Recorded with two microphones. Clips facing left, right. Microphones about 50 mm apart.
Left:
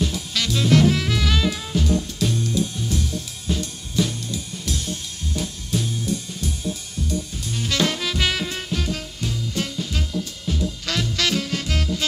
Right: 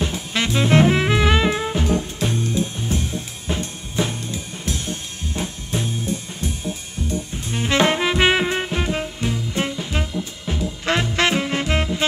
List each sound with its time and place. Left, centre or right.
0.0 s music: right